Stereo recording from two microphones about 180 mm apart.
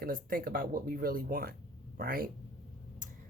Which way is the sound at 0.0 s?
50° right (ahead or behind).